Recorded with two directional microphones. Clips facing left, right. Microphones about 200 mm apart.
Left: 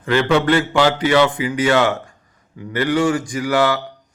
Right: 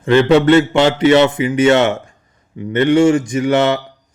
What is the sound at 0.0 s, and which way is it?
A man's voice, 25° right (ahead or behind).